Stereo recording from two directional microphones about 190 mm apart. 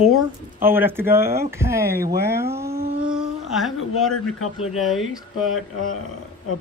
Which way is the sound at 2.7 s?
55° right (ahead or behind).